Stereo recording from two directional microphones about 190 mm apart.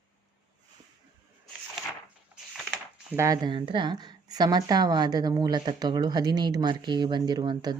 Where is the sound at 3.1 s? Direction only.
15° right (ahead or behind).